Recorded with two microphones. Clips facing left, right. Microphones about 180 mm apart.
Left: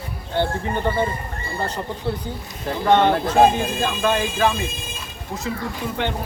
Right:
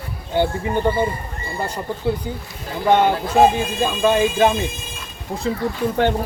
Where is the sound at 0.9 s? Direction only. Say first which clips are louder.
Right 3 dB; 10° right (ahead or behind).